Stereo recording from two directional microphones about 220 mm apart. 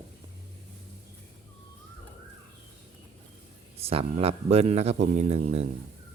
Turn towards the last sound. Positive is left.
turn(degrees=-30)  # may be behind; listen again after turning